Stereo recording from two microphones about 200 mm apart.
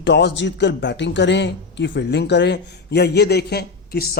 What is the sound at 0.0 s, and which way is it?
A man's voice, 60° left (ahead or behind).